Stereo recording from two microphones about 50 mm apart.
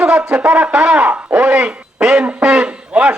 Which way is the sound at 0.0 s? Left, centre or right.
Right.